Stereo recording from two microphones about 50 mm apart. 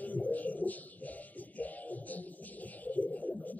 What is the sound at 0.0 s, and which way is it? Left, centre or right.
Music, left.